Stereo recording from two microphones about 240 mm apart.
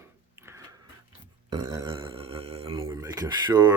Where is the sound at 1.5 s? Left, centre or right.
Centre.